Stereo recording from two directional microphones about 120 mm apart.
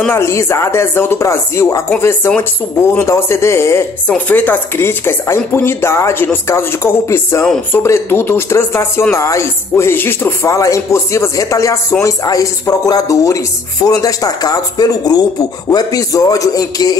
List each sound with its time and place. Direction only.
0.0 s speech: 20° left (ahead or behind)